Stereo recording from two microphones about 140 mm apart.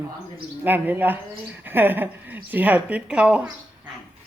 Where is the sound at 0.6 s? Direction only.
15° right (ahead or behind).